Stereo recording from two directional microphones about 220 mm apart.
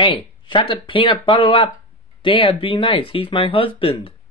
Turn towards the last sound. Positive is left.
turn(degrees=25)  # may be behind; listen again after turning